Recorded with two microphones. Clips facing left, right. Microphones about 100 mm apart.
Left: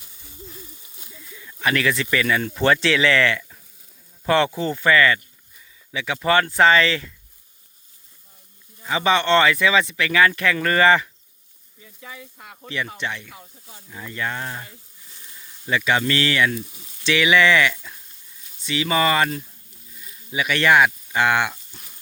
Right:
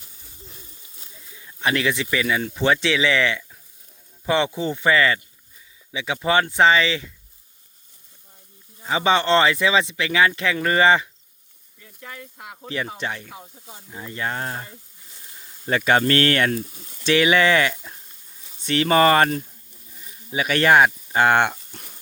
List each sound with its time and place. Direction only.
1.5 s speech: 25° right (ahead or behind)
8.8 s speech: 25° right (ahead or behind)
11.8 s speech: 5° left (ahead or behind)
12.6 s speech: 35° right (ahead or behind)
13.3 s speech: 30° right (ahead or behind)
15.6 s speech: 45° right (ahead or behind)
18.6 s speech: 55° right (ahead or behind)
21.7 s frying: 55° right (ahead or behind)